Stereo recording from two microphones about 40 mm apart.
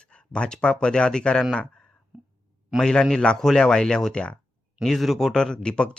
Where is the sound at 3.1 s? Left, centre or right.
Centre.